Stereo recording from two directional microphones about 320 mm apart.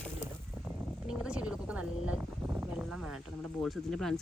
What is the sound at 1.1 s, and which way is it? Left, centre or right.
Speech, centre.